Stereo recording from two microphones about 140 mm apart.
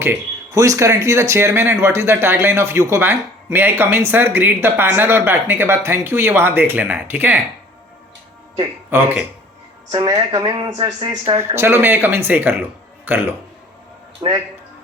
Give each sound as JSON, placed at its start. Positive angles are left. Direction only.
{"t": 0.5, "sound": "speech", "side_deg": -20}
{"t": 8.9, "sound": "speech", "side_deg": -15}
{"t": 9.9, "sound": "speech", "side_deg": -30}
{"t": 11.3, "sound": "speech", "side_deg": -20}
{"t": 14.2, "sound": "a man's voice", "side_deg": -30}